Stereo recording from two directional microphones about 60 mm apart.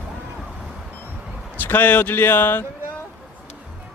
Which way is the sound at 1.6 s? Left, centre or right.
Left.